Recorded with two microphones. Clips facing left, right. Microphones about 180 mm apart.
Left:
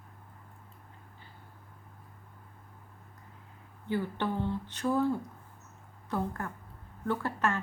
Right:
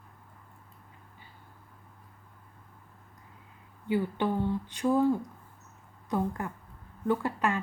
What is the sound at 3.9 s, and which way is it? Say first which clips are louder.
Speech: right 3 dB; 15° right (ahead or behind).